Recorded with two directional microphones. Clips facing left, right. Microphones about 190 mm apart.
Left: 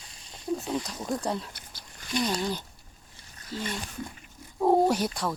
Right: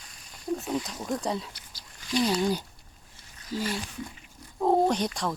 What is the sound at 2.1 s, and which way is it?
Speech, 10° right (ahead or behind).